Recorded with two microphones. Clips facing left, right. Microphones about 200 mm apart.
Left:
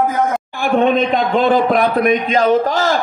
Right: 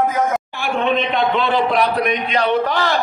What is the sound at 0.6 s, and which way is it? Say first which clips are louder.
A man's voice: left 6 dB; 50° left (ahead or behind).